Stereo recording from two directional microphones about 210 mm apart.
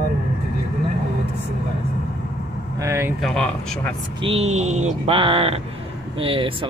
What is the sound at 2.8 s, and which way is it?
Speech, 15° right (ahead or behind).